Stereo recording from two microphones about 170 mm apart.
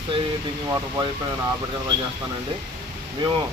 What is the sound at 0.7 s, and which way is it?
Speech, 20° right (ahead or behind).